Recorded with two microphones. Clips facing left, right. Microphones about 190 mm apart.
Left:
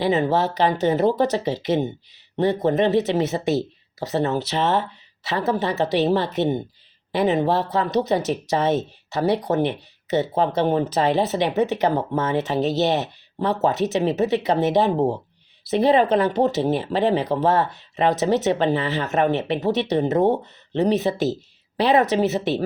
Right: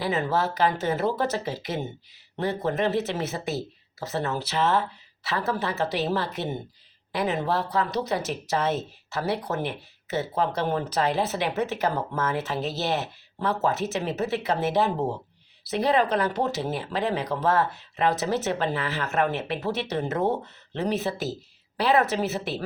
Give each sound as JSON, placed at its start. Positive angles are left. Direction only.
{"t": 0.0, "sound": "speech", "side_deg": 25}
{"t": 2.6, "sound": "a woman's voice", "side_deg": 20}